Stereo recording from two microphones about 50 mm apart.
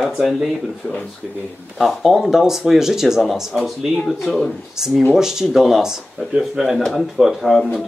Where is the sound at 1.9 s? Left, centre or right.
Centre.